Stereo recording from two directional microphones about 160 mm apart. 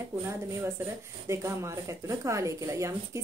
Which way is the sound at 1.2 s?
20° right (ahead or behind).